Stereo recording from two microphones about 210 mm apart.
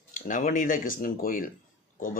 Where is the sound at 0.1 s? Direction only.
40° left (ahead or behind).